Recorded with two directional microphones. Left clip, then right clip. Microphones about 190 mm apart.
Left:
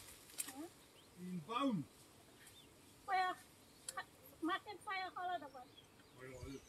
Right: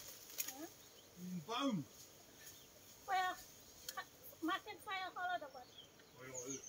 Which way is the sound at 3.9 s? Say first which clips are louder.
Left 3 dB; 5° right (ahead or behind).